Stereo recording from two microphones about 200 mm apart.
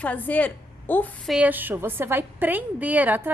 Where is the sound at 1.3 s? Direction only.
5° right (ahead or behind).